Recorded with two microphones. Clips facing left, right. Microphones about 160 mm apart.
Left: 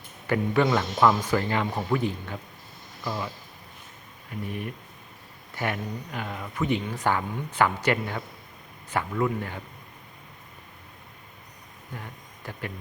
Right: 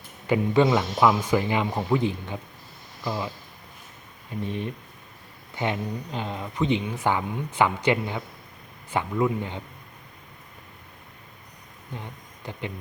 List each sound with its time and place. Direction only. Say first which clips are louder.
0.3 s speech: right 3 dB; 15° right (ahead or behind)
4.4 s speech: right 3 dB; 25° right (ahead or behind)
11.9 s speech: right 2 dB; 20° right (ahead or behind)